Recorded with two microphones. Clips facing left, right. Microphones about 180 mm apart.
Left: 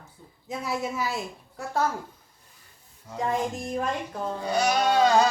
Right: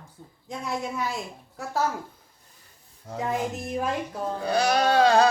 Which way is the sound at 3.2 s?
5° right (ahead or behind).